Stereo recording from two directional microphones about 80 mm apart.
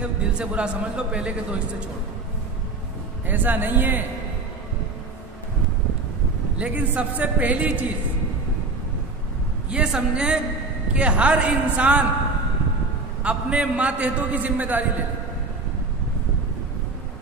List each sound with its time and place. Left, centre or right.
0.0 s a man's voice: centre
3.3 s a man's voice: right
6.6 s a man's voice: centre
9.7 s a man's voice: centre
13.2 s a man's voice: centre